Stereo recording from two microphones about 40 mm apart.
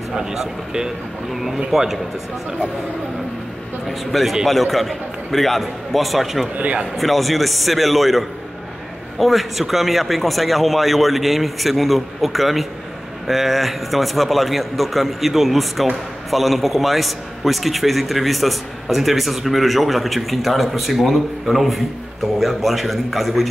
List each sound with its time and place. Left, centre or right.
0.1 s speech: centre
4.1 s a man's voice: centre
6.6 s a man's voice: right
7.0 s a man's voice: centre